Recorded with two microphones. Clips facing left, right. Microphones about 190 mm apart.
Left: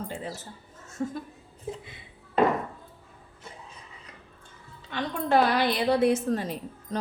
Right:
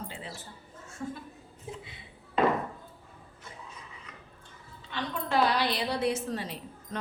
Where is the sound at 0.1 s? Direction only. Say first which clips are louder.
Left 7 dB; 45° left (ahead or behind).